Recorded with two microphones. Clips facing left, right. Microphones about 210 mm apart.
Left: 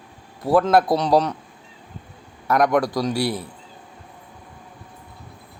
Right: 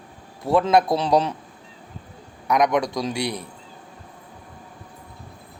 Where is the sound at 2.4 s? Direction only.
5° left (ahead or behind).